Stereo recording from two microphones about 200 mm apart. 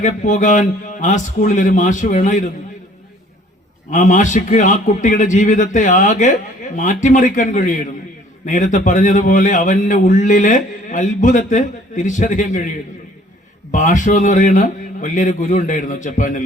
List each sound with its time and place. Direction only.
0.0 s a man's voice: 40° left (ahead or behind)
3.9 s a man's voice: 40° left (ahead or behind)